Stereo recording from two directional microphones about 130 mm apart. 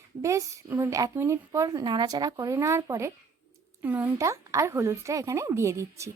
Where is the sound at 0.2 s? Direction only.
25° right (ahead or behind).